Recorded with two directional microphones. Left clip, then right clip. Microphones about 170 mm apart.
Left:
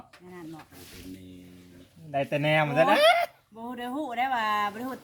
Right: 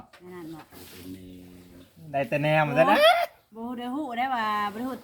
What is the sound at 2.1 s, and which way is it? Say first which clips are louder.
Speech: right 1 dB; 15° right (ahead or behind).